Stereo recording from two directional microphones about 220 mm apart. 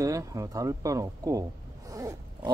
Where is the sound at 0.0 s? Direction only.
15° right (ahead or behind).